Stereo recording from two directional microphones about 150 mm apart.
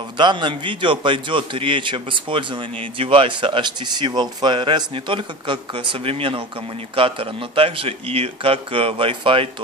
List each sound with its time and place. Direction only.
0.2 s a man's voice: 30° right (ahead or behind)